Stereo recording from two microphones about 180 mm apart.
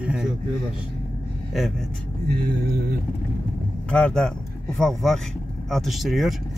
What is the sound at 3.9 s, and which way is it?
Speech, 5° left (ahead or behind).